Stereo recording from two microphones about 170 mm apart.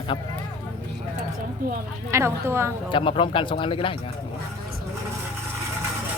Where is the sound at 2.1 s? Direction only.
15° right (ahead or behind).